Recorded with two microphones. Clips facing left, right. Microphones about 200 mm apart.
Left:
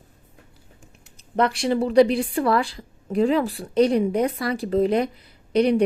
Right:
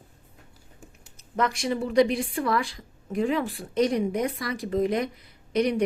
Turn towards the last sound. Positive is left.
turn(degrees=30)  # may be behind; listen again after turning